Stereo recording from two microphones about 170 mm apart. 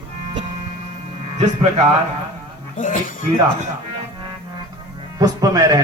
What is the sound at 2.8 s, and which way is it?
Speech, 50° left (ahead or behind).